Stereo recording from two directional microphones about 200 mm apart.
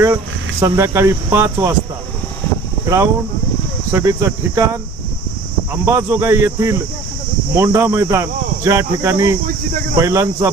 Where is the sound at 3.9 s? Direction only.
15° right (ahead or behind).